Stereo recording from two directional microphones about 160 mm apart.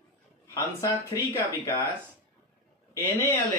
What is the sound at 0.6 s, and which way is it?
Speech, 20° left (ahead or behind).